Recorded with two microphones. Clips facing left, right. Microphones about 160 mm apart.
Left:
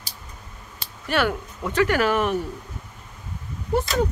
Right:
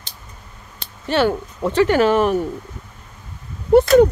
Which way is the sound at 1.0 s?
30° right (ahead or behind).